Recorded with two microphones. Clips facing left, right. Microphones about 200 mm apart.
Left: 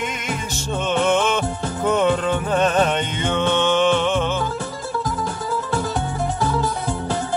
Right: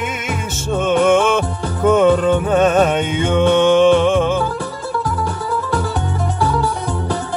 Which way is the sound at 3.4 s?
50° right (ahead or behind).